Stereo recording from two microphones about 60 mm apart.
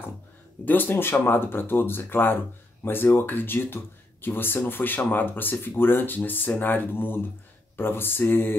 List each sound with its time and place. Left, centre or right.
0.7 s speech: left